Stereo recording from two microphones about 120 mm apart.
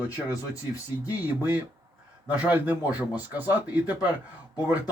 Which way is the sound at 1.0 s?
15° right (ahead or behind).